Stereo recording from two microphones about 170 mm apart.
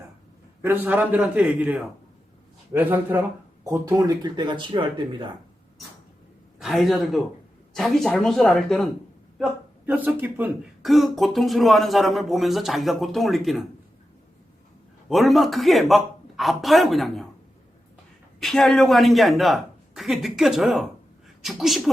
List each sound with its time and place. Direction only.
0.6 s speech: 10° right (ahead or behind); by 5.3 s 30° right (ahead or behind)
6.6 s speech: centre (ahead or behind)
9.8 s speech: 10° right (ahead or behind)
10.8 s speech: centre (ahead or behind)
15.1 s speech: centre (ahead or behind)
18.3 s speech: centre (ahead or behind)